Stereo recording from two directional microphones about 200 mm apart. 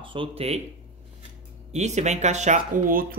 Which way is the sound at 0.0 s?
25° right (ahead or behind).